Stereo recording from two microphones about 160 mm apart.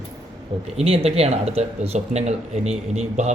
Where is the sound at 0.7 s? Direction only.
35° right (ahead or behind).